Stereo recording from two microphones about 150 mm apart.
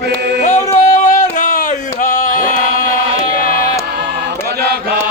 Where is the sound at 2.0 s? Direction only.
55° left (ahead or behind).